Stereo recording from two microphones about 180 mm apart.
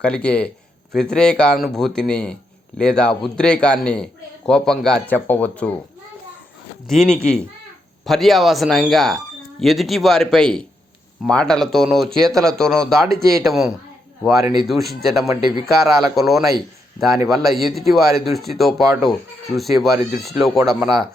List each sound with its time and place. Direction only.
0.0 s a man's voice: 5° left (ahead or behind)
6.8 s a man's voice: centre (ahead or behind)
14.6 s a man's voice: centre (ahead or behind)
15.3 s speech: 25° right (ahead or behind)
15.6 s a man's voice: centre (ahead or behind)